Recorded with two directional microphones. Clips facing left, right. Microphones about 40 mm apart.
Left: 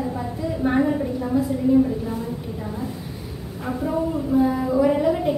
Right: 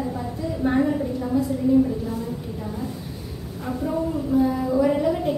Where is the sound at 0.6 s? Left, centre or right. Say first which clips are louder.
Left 1 dB; left.